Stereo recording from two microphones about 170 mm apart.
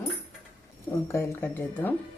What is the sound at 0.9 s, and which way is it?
Speech, 15° left (ahead or behind).